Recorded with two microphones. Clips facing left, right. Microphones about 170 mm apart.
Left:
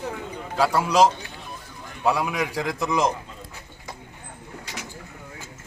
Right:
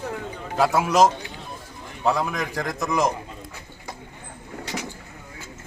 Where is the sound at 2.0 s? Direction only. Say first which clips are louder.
Even; 10° left (ahead or behind).